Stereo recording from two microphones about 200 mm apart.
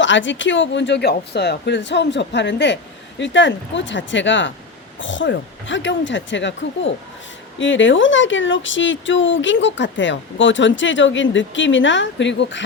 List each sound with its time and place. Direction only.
0.0 s speech: 65° left (ahead or behind)